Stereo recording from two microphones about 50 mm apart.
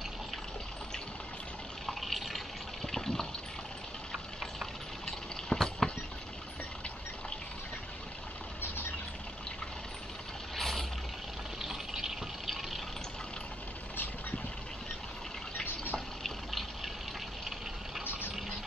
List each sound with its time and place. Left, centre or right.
1.9 s water: centre
4.1 s vehicle: centre
5.0 s a sound: centre
10.5 s vehicle: centre
11.6 s fill: centre
15.6 s water: left
16.2 s water: centre